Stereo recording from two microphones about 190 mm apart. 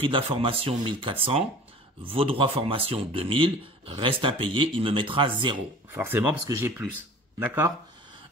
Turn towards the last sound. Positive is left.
turn(degrees=-10)  # may be behind; listen again after turning